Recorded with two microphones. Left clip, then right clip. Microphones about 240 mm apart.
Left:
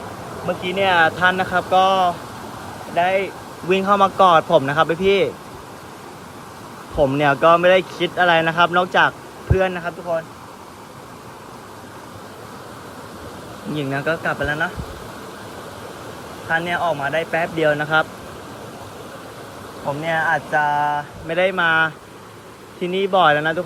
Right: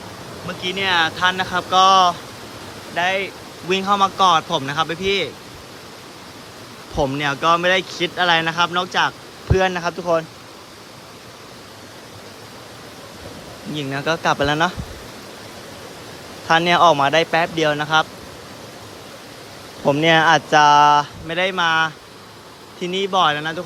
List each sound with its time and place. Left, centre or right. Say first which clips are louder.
0.4 s speech: left 3 dB; centre
6.9 s speech: left 4 dB; centre
13.7 s speech: even; centre
16.5 s speech: right 7 dB; centre
20.0 s speech: right 6 dB; right
20.3 s speech: right 6 dB; centre
21.2 s speech: left 1 dB; centre